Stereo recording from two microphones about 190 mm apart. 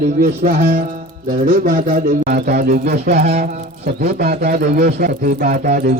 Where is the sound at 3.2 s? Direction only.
35° right (ahead or behind).